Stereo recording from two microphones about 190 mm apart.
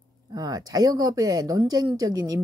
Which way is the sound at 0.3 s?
20° right (ahead or behind).